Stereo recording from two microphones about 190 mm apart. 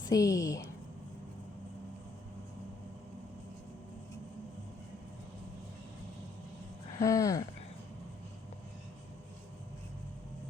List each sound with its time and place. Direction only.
0.0 s speech: 20° left (ahead or behind)
7.0 s speech: 15° left (ahead or behind)